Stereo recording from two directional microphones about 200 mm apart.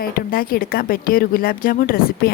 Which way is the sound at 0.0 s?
45° left (ahead or behind).